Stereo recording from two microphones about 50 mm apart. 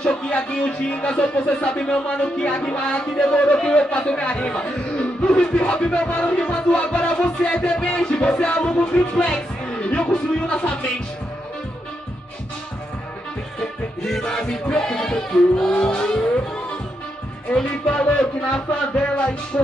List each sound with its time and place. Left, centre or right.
0.0 s music: left
9.8 s speech: left
10.1 s music: left
13.6 s music: centre
17.5 s music: centre